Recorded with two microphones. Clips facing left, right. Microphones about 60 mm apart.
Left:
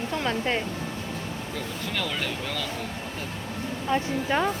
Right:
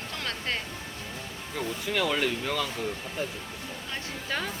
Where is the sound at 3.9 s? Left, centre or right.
Left.